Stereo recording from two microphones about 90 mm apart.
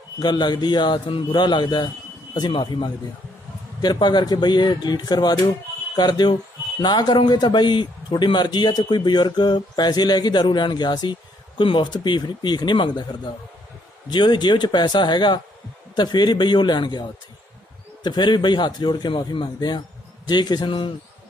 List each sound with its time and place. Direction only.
0.2 s a man's voice: 55° left (ahead or behind)
14.1 s a man's voice: 55° left (ahead or behind)
18.0 s a man's voice: 55° left (ahead or behind)
20.7 s a man's voice: 70° left (ahead or behind)